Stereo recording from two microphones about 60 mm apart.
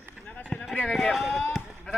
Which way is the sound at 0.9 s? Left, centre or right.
Centre.